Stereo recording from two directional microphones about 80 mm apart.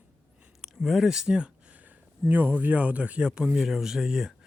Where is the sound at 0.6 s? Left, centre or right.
Centre.